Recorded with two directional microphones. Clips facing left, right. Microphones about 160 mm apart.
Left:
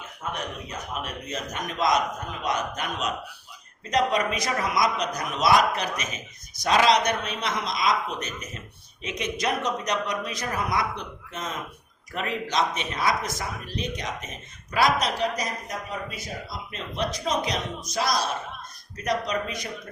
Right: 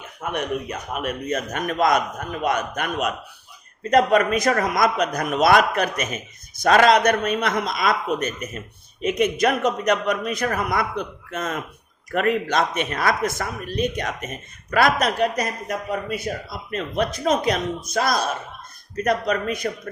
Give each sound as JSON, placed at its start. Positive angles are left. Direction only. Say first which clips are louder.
{"t": 0.3, "sound": "a man's voice", "louder": "right 8 dB", "side_deg": -65}